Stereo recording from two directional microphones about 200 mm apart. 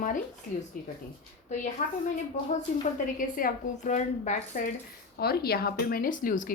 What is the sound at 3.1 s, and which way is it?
A woman's voice, 40° left (ahead or behind).